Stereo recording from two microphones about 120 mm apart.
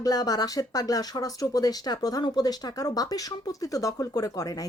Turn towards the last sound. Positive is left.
turn(degrees=30)  # may be behind; listen again after turning